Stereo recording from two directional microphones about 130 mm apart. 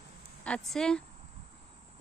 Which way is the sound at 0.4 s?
5° left (ahead or behind).